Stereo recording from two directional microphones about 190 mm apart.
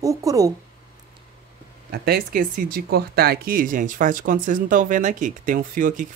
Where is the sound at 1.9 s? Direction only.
55° right (ahead or behind).